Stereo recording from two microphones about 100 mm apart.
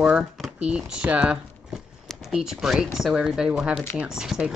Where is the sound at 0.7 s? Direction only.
10° right (ahead or behind).